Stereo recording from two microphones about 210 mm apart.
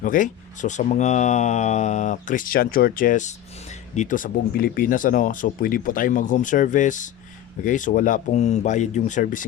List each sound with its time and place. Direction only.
0.0 s speech: 40° left (ahead or behind)